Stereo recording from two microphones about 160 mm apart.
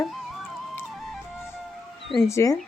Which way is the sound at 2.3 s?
20° left (ahead or behind).